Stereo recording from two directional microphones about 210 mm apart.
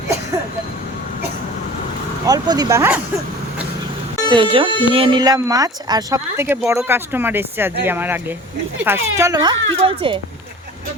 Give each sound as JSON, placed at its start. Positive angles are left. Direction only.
{"t": 2.2, "sound": "speech", "side_deg": -15}
{"t": 4.3, "sound": "speech", "side_deg": -20}